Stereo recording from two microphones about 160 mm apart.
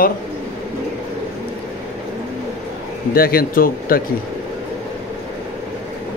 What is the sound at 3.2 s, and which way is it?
Speech, 70° left (ahead or behind).